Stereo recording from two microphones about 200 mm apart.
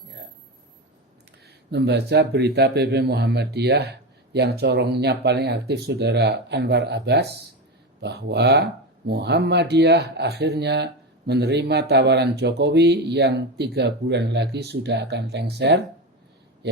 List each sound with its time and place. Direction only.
1.7 s speech: 55° right (ahead or behind)